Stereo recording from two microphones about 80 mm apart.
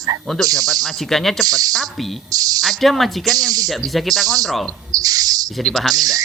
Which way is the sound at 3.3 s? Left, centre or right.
Right.